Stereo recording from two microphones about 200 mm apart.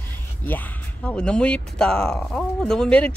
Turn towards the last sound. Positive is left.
turn(degrees=5)  # may be behind; listen again after turning